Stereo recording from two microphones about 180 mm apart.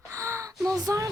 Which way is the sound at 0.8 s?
20° right (ahead or behind).